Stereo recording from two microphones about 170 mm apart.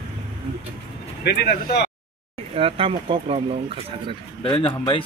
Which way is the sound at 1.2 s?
75° left (ahead or behind).